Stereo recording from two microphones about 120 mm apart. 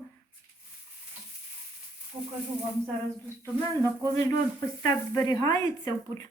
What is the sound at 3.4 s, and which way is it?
Speech, 20° left (ahead or behind).